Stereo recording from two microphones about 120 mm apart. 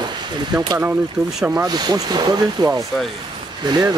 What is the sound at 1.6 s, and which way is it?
Speech, 35° right (ahead or behind).